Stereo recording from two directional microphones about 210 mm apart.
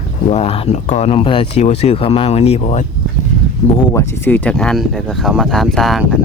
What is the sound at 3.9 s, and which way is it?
Speech, 10° left (ahead or behind).